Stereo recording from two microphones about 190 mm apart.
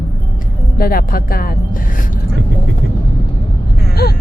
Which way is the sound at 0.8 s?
50° left (ahead or behind).